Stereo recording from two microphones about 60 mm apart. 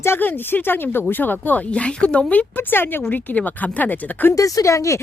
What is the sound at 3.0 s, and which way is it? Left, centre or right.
Speech, left.